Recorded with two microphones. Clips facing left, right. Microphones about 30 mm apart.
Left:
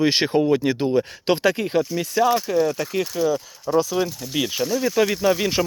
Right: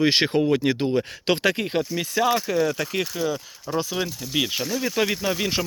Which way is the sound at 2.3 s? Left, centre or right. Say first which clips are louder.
Left 2 dB; right.